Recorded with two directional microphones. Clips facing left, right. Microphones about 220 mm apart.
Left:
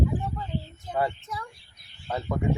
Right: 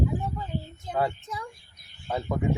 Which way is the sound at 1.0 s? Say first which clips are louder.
Even; 15° right (ahead or behind).